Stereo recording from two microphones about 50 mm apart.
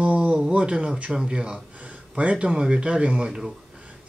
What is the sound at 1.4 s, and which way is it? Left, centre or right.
Speech, right.